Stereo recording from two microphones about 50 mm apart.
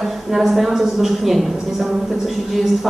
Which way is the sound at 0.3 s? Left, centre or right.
Centre.